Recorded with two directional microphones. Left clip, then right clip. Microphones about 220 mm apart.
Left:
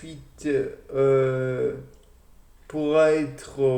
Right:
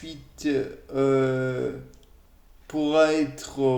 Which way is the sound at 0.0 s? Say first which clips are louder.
Right 1 dB; 40° right (ahead or behind).